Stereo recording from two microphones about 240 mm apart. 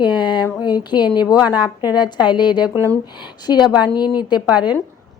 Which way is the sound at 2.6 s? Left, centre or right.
Centre.